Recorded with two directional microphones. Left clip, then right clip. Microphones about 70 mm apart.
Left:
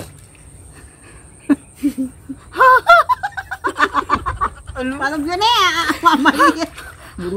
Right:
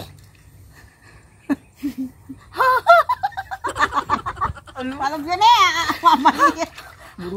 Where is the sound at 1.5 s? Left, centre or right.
Centre.